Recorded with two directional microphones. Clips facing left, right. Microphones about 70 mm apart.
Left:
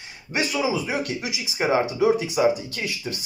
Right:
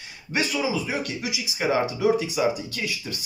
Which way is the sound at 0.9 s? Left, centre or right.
Left.